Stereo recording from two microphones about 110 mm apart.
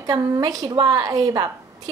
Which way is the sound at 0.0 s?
35° right (ahead or behind).